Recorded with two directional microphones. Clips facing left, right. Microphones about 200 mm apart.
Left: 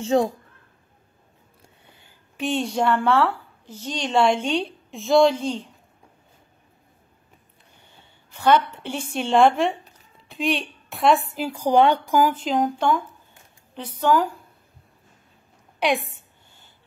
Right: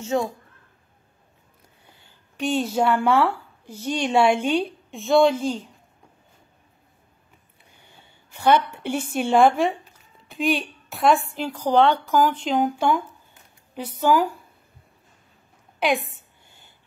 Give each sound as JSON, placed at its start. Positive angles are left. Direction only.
{"t": 0.0, "sound": "a woman's voice", "side_deg": 30}
{"t": 2.3, "sound": "a woman's voice", "side_deg": 0}
{"t": 8.3, "sound": "a woman's voice", "side_deg": -10}